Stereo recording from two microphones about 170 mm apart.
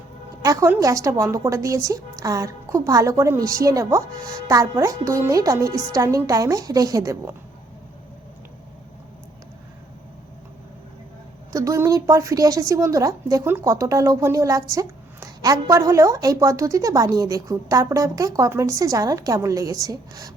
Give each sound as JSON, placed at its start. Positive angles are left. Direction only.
{"t": 0.4, "sound": "a woman's voice", "side_deg": -15}
{"t": 11.5, "sound": "a woman's voice", "side_deg": -20}